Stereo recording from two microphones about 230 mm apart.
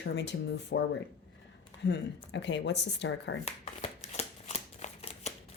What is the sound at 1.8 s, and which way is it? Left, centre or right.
A woman's voice, left.